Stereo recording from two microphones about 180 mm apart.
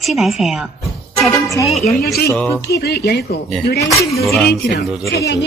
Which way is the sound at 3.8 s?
15° left (ahead or behind).